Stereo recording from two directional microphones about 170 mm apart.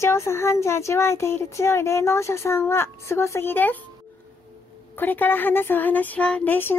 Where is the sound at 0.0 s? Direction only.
15° left (ahead or behind).